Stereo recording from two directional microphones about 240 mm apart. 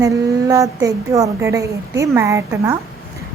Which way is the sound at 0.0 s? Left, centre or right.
Centre.